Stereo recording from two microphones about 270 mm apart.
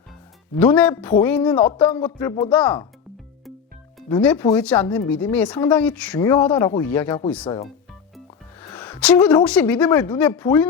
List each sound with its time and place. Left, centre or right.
0.6 s speech: centre
4.1 s speech: centre
9.0 s speech: centre